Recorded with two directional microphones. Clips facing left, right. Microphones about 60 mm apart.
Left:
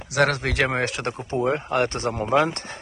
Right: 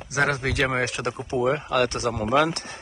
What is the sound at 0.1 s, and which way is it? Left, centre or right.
Speech, left.